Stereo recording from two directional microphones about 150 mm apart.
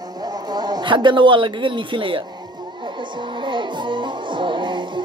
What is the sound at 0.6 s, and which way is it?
A man's voice, 30° right (ahead or behind).